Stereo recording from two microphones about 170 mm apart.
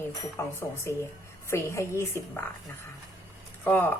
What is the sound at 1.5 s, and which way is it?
Speech, 15° left (ahead or behind).